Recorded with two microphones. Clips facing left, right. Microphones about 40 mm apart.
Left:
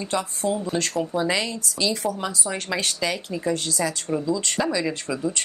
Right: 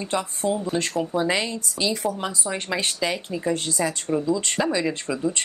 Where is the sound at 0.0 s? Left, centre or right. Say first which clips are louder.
Even; right.